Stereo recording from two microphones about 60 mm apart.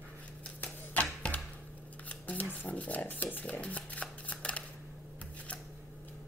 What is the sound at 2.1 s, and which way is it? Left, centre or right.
Shuffling cards, left.